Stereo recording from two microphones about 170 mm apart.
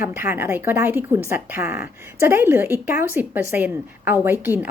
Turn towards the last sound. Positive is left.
turn(degrees=-10)  # may be behind; listen again after turning